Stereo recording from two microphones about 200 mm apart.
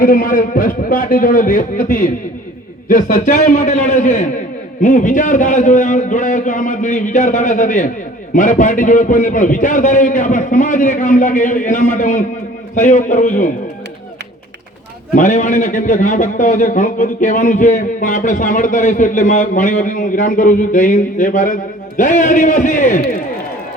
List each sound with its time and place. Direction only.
0.0 s a man's voice: 45° left (ahead or behind)
15.1 s a man's voice: 40° left (ahead or behind)